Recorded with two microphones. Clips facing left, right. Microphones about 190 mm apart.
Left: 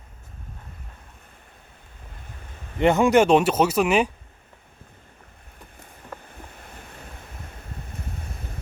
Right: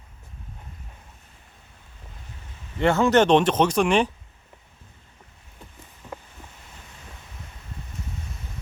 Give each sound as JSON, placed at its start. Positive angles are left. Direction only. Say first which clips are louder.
{"t": 2.7, "sound": "speech", "louder": "left 1 dB", "side_deg": 15}
{"t": 6.2, "sound": "waves", "louder": "left 4 dB", "side_deg": 55}